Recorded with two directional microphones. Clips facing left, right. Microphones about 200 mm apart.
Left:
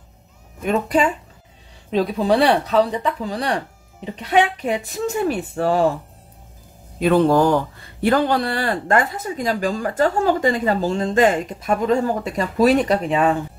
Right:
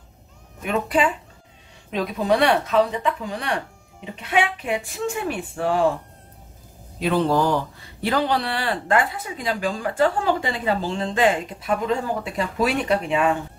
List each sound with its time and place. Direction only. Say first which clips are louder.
0.7 s speech: left 3 dB; 40° left (ahead or behind)
7.0 s speech: left 5 dB; 50° left (ahead or behind)